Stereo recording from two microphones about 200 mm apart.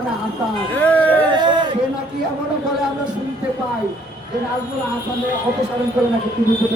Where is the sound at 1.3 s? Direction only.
20° right (ahead or behind).